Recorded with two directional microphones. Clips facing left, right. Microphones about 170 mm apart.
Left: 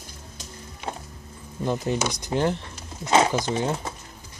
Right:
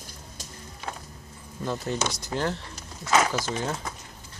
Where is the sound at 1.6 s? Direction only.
15° left (ahead or behind).